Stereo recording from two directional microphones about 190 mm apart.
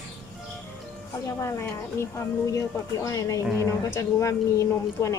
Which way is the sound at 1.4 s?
15° left (ahead or behind).